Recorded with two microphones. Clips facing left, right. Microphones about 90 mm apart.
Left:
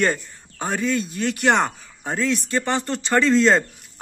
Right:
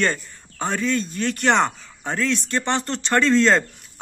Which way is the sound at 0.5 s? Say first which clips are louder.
Even; 10° left (ahead or behind).